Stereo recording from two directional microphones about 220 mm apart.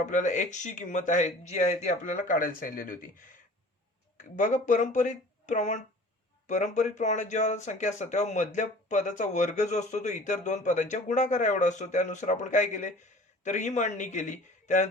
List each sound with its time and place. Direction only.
0.0 s speech: 35° left (ahead or behind)
4.4 s speech: 35° left (ahead or behind)